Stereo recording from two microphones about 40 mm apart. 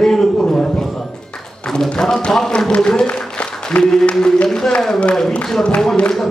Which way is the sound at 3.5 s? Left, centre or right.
Centre.